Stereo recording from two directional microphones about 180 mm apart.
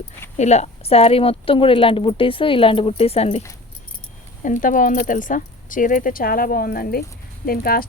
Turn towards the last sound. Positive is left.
turn(degrees=55)  # may be behind; listen again after turning